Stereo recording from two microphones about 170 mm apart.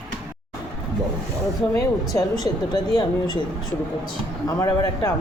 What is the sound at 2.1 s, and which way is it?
Speech, 20° left (ahead or behind).